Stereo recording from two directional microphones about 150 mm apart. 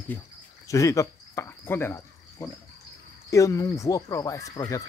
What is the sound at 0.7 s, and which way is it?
Cricket, 20° left (ahead or behind).